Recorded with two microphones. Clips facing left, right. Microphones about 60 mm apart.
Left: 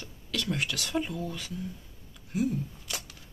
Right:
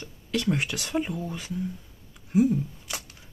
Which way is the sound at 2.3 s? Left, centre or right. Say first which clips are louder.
Right 7 dB; centre.